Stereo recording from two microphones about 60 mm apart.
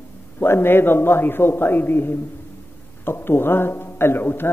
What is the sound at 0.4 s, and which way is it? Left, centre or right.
A man's voice, left.